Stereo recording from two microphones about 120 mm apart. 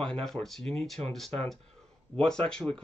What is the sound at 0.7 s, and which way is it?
Speech, 55° right (ahead or behind).